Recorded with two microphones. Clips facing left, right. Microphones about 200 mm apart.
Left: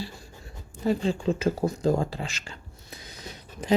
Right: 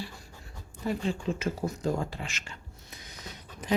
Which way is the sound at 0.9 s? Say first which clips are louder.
Left 5 dB; 30° left (ahead or behind).